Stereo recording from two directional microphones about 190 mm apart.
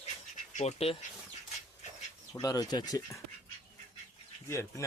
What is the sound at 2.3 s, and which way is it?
Speech, 20° left (ahead or behind).